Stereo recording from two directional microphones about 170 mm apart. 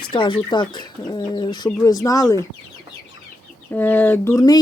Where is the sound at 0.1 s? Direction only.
30° left (ahead or behind).